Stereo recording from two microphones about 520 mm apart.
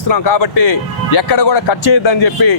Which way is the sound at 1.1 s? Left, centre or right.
Left.